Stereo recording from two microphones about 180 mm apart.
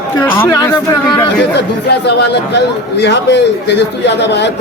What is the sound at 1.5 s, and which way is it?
A man's voice, 70° left (ahead or behind).